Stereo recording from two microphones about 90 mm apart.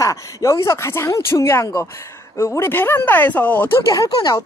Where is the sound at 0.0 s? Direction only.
35° left (ahead or behind); by 3.8 s 20° left (ahead or behind).